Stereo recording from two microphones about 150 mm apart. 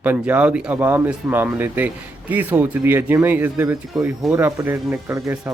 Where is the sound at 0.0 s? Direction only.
10° right (ahead or behind).